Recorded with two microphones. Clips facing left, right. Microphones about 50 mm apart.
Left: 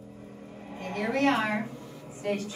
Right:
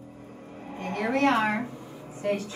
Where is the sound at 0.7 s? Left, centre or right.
Right.